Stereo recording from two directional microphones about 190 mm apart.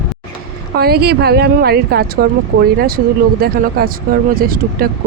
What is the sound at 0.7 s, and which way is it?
A woman's voice, 55° right (ahead or behind).